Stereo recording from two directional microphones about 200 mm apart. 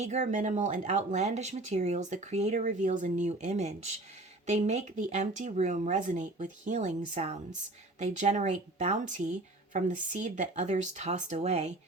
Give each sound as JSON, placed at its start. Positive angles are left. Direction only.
{"t": 0.0, "sound": "speech", "side_deg": -35}